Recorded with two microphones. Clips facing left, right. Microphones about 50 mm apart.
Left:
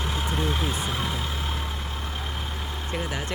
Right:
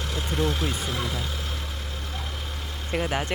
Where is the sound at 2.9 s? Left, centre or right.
Right.